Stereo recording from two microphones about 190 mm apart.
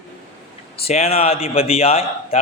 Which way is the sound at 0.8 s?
30° left (ahead or behind).